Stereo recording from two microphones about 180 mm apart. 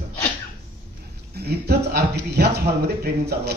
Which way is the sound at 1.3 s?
65° right (ahead or behind).